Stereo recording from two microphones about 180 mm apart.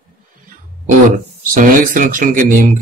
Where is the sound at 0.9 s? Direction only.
45° right (ahead or behind).